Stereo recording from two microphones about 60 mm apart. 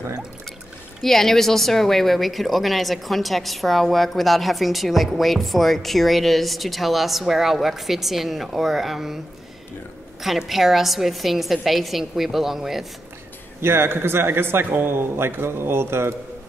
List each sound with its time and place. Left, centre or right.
1.0 s speech: centre
10.2 s speech: centre
13.6 s a man's voice: right